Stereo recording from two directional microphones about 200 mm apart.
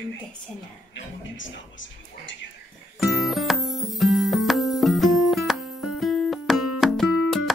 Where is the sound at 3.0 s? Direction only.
Centre (ahead or behind).